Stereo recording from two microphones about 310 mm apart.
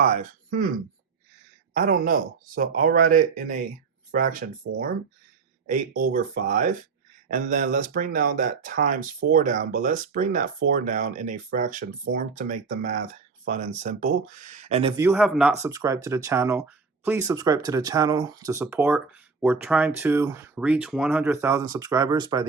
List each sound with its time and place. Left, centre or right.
0.0 s speech: right
1.7 s speech: right